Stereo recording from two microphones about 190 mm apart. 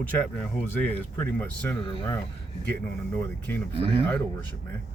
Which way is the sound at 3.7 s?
30° right (ahead or behind).